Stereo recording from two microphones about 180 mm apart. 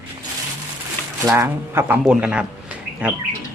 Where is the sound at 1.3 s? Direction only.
15° right (ahead or behind).